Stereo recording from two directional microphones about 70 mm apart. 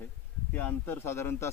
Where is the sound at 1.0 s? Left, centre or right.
Left.